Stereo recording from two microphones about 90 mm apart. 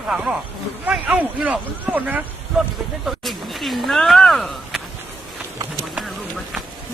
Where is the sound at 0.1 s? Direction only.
10° right (ahead or behind).